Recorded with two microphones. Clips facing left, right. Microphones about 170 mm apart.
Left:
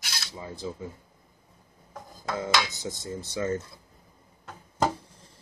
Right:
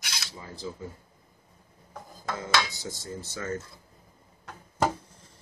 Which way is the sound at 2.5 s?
20° left (ahead or behind).